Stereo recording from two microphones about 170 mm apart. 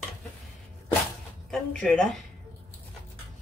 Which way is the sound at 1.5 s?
5° left (ahead or behind).